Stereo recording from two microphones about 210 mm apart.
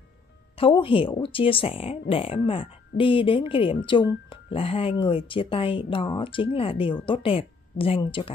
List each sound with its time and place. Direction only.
0.6 s speech: 25° left (ahead or behind)